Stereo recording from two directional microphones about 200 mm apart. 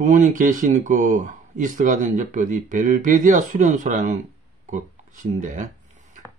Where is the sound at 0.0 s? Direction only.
40° right (ahead or behind).